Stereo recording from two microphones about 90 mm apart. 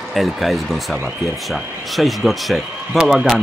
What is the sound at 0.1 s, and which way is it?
Speech, centre (ahead or behind).